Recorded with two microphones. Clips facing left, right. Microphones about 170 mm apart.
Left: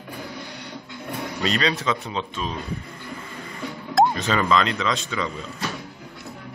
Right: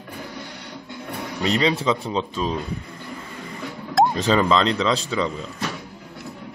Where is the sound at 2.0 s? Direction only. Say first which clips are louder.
Right 4 dB; 30° right (ahead or behind).